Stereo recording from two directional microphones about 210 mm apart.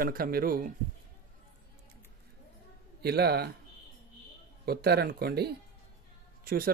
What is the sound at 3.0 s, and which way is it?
Speech, 50° right (ahead or behind).